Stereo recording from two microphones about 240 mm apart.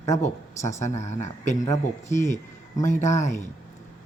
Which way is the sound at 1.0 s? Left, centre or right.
Left.